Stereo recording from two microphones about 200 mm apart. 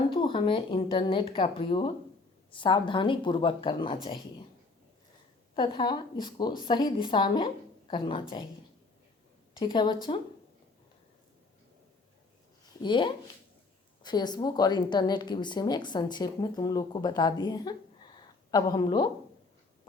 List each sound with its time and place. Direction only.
0.1 s a woman's voice: 25° left (ahead or behind)
5.5 s a woman's voice: 25° left (ahead or behind)
9.6 s a woman's voice: 25° left (ahead or behind)
12.6 s a woman's voice: 25° left (ahead or behind)